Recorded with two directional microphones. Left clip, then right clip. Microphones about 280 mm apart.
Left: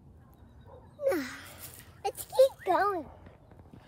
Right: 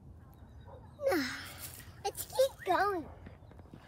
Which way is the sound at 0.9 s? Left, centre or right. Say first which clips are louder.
Left 2 dB; centre.